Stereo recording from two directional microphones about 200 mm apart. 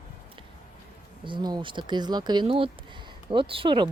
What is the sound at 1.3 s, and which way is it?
Speech, 20° right (ahead or behind).